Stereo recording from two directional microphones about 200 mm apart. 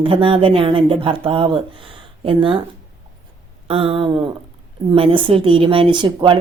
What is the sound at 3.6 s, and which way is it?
A woman's voice, 30° right (ahead or behind).